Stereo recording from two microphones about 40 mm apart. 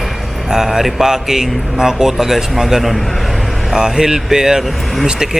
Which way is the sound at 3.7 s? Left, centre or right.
Centre.